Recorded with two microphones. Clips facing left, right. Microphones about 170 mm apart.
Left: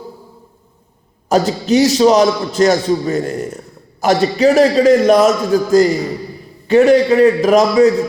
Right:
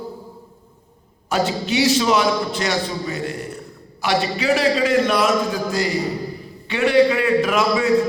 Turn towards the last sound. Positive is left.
turn(degrees=40)  # may be behind; listen again after turning